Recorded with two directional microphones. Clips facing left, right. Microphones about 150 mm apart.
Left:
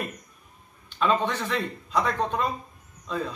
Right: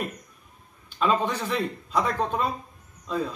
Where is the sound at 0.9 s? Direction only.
5° right (ahead or behind).